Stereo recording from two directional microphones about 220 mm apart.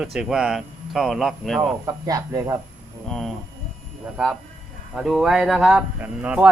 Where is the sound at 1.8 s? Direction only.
15° right (ahead or behind).